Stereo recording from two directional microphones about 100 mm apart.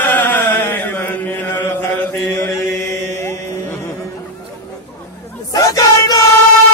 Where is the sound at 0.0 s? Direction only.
20° left (ahead or behind).